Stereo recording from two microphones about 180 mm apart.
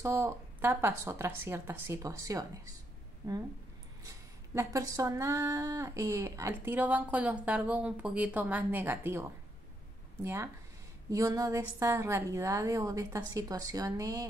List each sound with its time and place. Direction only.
0.0 s speech: 15° right (ahead or behind)
4.6 s speech: 20° right (ahead or behind)